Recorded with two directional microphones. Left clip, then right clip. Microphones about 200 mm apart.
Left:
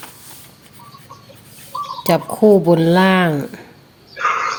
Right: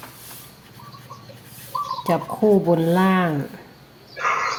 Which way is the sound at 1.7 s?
20° left (ahead or behind).